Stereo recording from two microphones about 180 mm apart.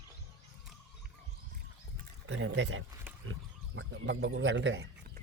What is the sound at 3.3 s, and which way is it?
Wild animals, 90° right.